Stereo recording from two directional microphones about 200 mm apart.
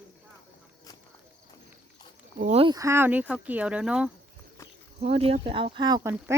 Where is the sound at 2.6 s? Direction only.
20° right (ahead or behind).